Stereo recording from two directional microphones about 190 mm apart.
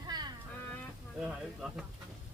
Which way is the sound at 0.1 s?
20° right (ahead or behind).